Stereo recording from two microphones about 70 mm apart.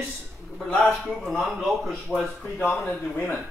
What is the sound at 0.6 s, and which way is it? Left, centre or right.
Speech, centre.